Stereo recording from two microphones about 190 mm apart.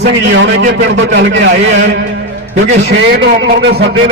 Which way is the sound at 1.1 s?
65° right (ahead or behind).